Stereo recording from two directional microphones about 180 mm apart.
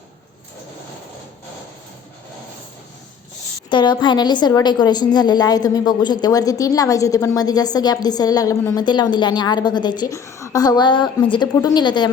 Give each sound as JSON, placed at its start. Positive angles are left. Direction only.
{"t": 3.7, "sound": "a woman's voice", "side_deg": 25}